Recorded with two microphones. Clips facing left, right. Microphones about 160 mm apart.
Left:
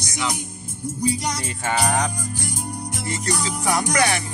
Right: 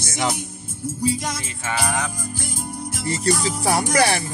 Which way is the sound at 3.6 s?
30° right (ahead or behind).